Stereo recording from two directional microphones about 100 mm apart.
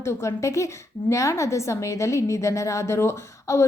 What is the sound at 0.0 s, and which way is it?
A woman's voice, 25° left (ahead or behind).